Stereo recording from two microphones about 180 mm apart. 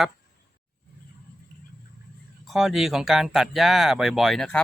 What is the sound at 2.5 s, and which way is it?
Speech, centre (ahead or behind).